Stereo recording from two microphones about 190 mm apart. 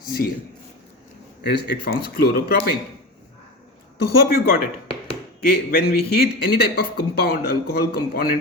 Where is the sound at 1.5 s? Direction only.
60° left (ahead or behind).